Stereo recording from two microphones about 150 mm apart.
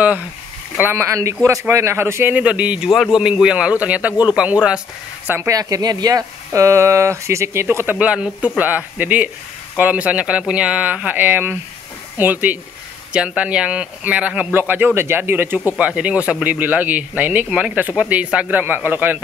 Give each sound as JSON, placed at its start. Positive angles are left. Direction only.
{"t": 0.7, "sound": "speech", "side_deg": -15}
{"t": 5.6, "sound": "speech", "side_deg": -25}